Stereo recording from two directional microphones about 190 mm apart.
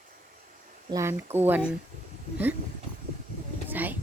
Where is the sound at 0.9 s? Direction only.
15° right (ahead or behind).